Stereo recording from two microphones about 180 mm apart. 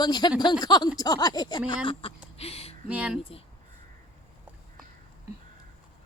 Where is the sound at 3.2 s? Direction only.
30° left (ahead or behind).